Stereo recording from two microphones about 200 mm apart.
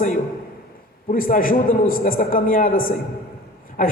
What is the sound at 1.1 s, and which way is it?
A man's voice, 45° left (ahead or behind).